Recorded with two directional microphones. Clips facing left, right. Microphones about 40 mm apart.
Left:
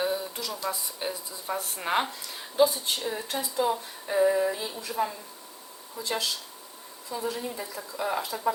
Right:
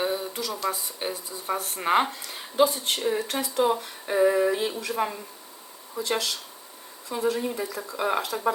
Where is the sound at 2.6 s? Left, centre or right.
Right.